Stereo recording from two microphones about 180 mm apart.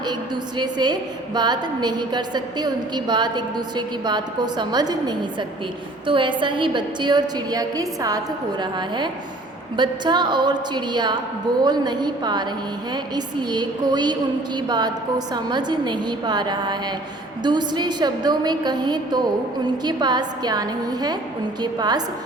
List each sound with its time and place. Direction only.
0.1 s a woman's voice: 25° right (ahead or behind)